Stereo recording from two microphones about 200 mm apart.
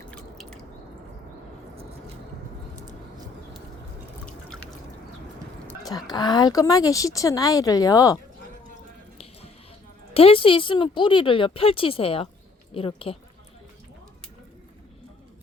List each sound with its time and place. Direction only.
0.1 s drip: 5° left (ahead or behind)
1.7 s a sound: 30° right (ahead or behind)
5.8 s speech: 20° left (ahead or behind)
10.2 s speech: 25° left (ahead or behind)